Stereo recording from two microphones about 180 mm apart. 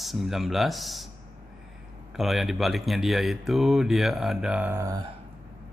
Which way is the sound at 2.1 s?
Centre (ahead or behind).